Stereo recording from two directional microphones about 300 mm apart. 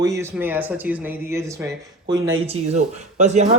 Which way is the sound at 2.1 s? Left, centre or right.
Centre.